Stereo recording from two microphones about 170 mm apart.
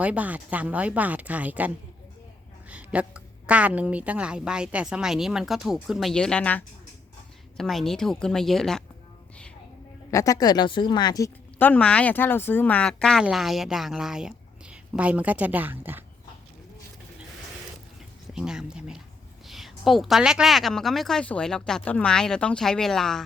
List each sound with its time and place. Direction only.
0.0 s a woman's voice: 10° right (ahead or behind)
10.1 s speech: 20° left (ahead or behind)
11.6 s speech: 5° left (ahead or behind); by 16.0 s 10° right (ahead or behind)
18.3 s speech: 5° right (ahead or behind)